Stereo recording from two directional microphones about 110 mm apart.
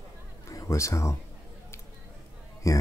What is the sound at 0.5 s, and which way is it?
Speech, 30° left (ahead or behind).